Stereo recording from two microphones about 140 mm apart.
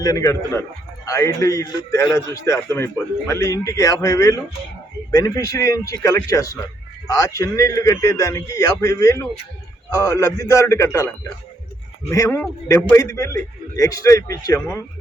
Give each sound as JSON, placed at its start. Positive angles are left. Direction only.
{"t": 0.0, "sound": "a man's voice", "side_deg": 25}